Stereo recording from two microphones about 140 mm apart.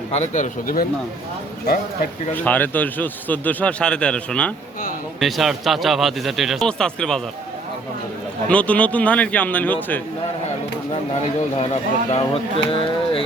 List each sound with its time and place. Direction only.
0.1 s speech: 55° left (ahead or behind); by 0.9 s 75° left (ahead or behind)
1.6 s speech: 90° left
2.3 s a man's voice: 10° left (ahead or behind)
8.4 s a man's voice: 10° left (ahead or behind)
11.5 s speech: 50° left (ahead or behind)